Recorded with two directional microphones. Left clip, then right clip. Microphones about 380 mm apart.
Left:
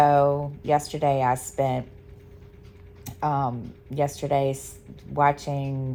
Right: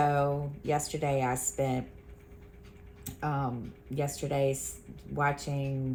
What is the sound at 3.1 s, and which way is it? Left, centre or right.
A woman's voice, centre.